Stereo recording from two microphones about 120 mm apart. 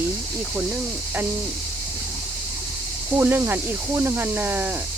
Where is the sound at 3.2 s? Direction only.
20° right (ahead or behind).